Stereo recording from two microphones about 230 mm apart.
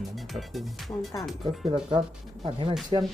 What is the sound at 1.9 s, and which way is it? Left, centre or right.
Speech, right.